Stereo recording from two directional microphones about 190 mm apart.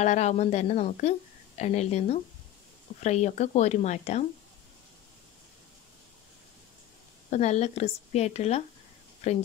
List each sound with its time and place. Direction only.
0.0 s speech: 40° left (ahead or behind)
7.2 s speech: 35° left (ahead or behind)